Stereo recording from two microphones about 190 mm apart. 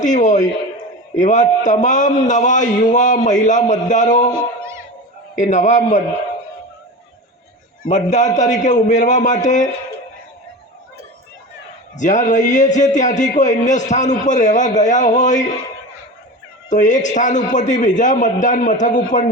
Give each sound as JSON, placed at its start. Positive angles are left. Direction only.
{"t": 0.0, "sound": "a man's voice", "side_deg": 40}
{"t": 4.4, "sound": "music", "side_deg": -15}
{"t": 5.3, "sound": "a man's voice", "side_deg": 40}
{"t": 7.9, "sound": "a man's voice", "side_deg": 40}
{"t": 11.9, "sound": "a man's voice", "side_deg": 40}
{"t": 16.6, "sound": "a man's voice", "side_deg": 40}